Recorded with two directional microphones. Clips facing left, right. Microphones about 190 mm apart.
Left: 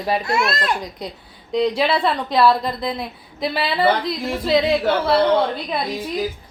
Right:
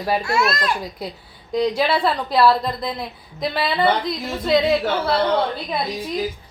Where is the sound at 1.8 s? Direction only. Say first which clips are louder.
Even; centre (ahead or behind).